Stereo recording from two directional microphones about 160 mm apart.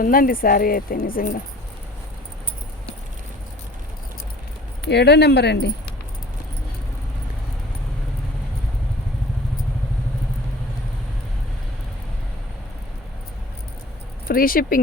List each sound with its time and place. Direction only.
0.0 s speech: 60° left (ahead or behind)
4.9 s speech: 90° left
14.3 s speech: 65° left (ahead or behind)